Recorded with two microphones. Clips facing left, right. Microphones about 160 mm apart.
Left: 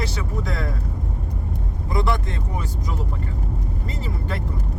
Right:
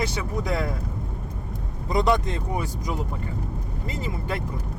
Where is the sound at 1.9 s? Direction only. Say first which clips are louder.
Right 3 dB; 20° right (ahead or behind).